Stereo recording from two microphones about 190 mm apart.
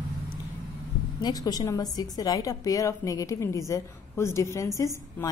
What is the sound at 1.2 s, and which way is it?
A woman's voice, 20° left (ahead or behind).